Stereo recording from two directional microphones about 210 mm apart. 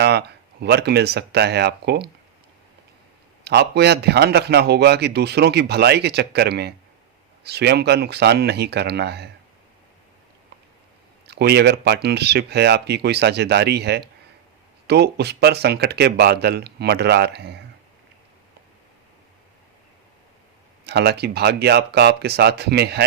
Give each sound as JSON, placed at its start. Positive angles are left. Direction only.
{"t": 0.0, "sound": "speech", "side_deg": -50}
{"t": 3.4, "sound": "a man's voice", "side_deg": -50}
{"t": 11.3, "sound": "a man's voice", "side_deg": -50}
{"t": 20.8, "sound": "a man's voice", "side_deg": -50}